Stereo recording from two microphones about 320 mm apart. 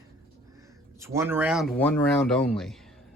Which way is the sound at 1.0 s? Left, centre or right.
Centre.